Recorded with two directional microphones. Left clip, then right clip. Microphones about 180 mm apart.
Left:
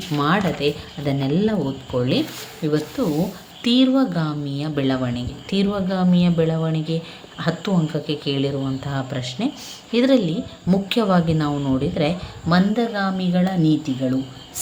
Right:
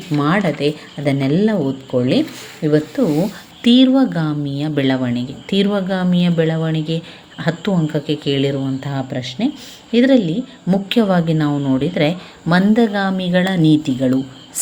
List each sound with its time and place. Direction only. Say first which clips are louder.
0.2 s a woman's voice: right 3 dB; 20° right (ahead or behind)